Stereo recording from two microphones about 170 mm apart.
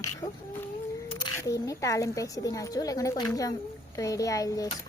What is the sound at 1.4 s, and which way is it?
A woman's voice, 20° left (ahead or behind).